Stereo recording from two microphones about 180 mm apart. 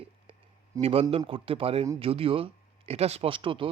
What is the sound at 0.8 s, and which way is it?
Speech, 30° right (ahead or behind).